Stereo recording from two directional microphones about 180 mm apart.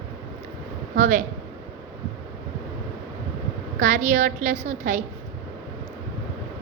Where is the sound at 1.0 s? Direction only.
45° right (ahead or behind).